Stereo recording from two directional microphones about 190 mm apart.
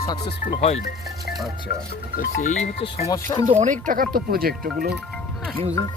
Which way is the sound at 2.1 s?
40° left (ahead or behind).